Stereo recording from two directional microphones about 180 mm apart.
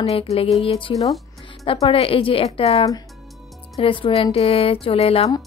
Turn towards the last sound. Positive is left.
turn(degrees=35)  # may be behind; listen again after turning